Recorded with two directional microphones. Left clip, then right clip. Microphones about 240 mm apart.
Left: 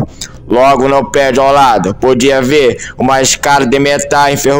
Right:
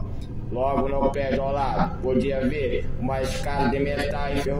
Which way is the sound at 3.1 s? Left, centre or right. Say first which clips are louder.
Left 19 dB; left.